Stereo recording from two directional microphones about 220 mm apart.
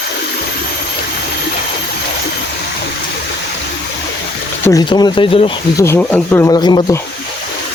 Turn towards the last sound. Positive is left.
turn(degrees=20)  # may be behind; listen again after turning